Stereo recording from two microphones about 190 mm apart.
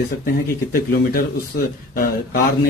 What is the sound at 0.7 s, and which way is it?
Speech, 50° left (ahead or behind).